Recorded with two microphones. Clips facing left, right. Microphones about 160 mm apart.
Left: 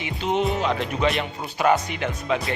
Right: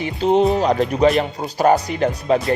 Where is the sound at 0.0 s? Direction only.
35° right (ahead or behind).